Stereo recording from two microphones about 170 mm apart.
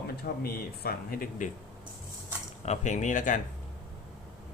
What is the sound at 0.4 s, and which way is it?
Speech, 65° left (ahead or behind).